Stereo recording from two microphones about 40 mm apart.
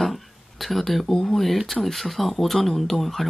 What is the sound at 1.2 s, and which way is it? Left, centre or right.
Speech, centre.